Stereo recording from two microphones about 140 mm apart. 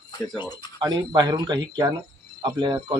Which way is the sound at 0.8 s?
30° right (ahead or behind).